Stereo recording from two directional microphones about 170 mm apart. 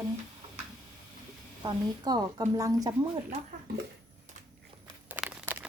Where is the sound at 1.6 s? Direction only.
25° right (ahead or behind).